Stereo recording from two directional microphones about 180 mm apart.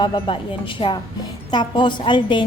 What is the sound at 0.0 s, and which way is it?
A woman's voice, 25° left (ahead or behind).